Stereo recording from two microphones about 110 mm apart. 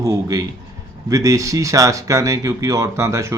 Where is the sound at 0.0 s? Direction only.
35° right (ahead or behind).